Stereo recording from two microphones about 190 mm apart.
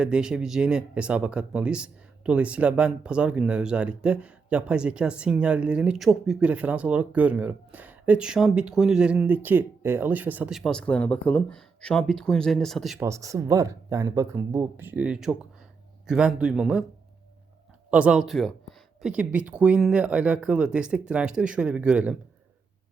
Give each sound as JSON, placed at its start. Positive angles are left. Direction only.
{"t": 0.0, "sound": "speech", "side_deg": -5}
{"t": 13.0, "sound": "speech", "side_deg": -15}
{"t": 17.9, "sound": "speech", "side_deg": -5}